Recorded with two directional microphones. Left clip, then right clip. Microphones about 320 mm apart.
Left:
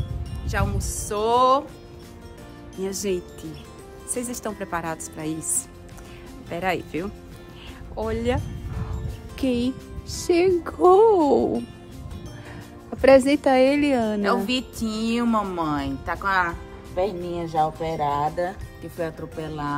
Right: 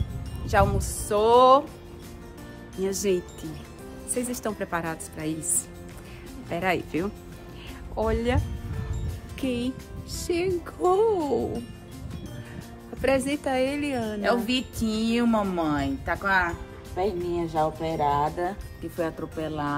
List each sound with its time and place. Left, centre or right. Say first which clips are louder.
0.5 s speech: right 5 dB; centre
2.8 s speech: right 1 dB; centre
6.5 s speech: even; centre
9.4 s speech: left 5 dB; centre
13.0 s speech: left 9 dB; left
14.2 s speech: left 2 dB; centre